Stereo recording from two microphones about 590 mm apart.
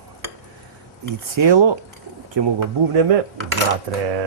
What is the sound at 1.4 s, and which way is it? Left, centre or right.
Speech, right.